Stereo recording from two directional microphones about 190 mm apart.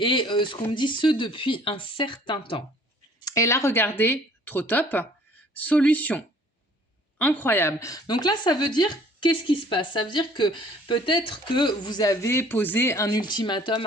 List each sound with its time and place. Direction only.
0.0 s a woman's voice: 25° left (ahead or behind)
3.2 s a woman's voice: 15° left (ahead or behind)